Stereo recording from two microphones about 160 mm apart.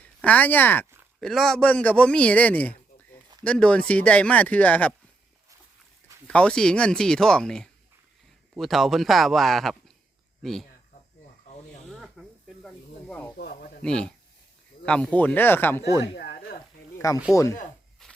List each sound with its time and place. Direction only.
0.0 s speech: 10° left (ahead or behind)
1.2 s a man's voice: centre (ahead or behind)
6.2 s speech: 5° left (ahead or behind)
11.9 s snake: centre (ahead or behind)
13.3 s a sound: 75° left (ahead or behind)
13.8 s a man's voice: 5° left (ahead or behind)
16.1 s a sound: 85° left
17.3 s speech: 20° left (ahead or behind)
18.0 s a sound: 5° left (ahead or behind)